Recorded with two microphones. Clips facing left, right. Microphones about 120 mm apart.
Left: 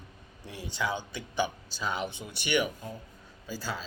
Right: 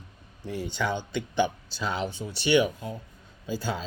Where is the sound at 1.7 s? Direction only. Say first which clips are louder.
Right 3 dB; 55° left (ahead or behind).